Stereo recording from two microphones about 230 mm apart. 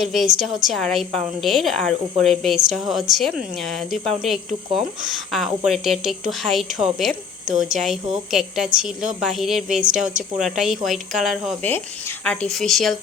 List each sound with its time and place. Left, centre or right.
0.0 s speech: centre
7.1 s speech: right
7.8 s speech: centre